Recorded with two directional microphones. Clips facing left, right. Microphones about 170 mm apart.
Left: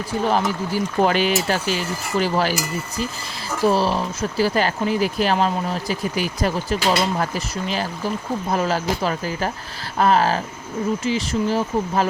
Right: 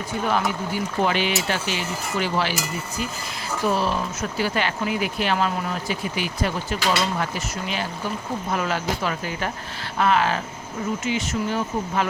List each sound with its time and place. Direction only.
0.3 s speech: 35° left (ahead or behind)
3.7 s speech: 35° left (ahead or behind)